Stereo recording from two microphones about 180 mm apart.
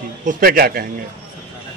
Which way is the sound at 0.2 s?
50° right (ahead or behind).